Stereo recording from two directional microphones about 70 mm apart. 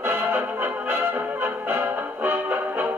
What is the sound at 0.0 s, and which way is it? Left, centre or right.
Music, right.